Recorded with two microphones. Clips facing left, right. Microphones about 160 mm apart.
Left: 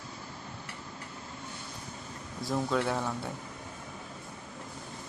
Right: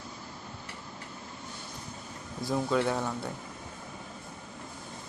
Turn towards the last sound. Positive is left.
turn(degrees=0)  # may be behind; listen again after turning